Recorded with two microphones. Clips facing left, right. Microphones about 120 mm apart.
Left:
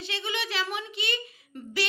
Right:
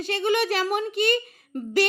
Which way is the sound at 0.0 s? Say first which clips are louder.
Right 11 dB; 45° right (ahead or behind).